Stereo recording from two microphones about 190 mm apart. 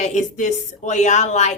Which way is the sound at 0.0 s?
40° left (ahead or behind).